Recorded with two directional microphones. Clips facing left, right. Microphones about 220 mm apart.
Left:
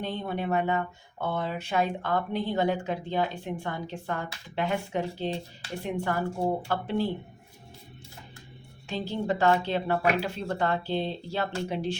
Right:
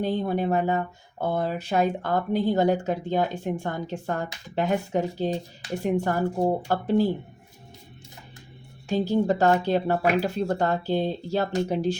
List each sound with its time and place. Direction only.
0.0 s speech: 40° right (ahead or behind)
8.9 s speech: 45° right (ahead or behind)